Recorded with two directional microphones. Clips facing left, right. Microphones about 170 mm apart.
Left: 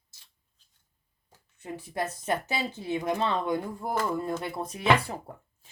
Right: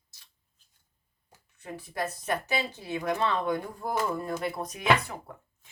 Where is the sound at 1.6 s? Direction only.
25° left (ahead or behind).